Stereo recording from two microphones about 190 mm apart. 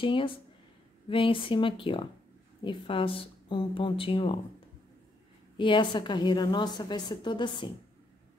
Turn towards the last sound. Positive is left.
turn(degrees=25)  # may be behind; listen again after turning